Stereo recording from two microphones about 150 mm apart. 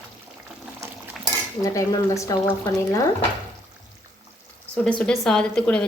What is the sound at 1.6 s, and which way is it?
Speech, 20° left (ahead or behind).